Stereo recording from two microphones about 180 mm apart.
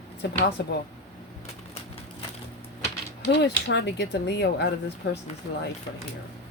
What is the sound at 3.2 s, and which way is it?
Speech, 75° left (ahead or behind).